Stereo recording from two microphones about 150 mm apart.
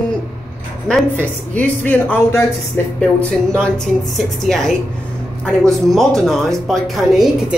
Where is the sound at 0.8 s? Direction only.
10° left (ahead or behind).